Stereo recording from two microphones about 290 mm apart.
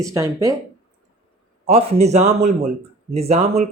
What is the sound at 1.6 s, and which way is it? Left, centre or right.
Speech, right.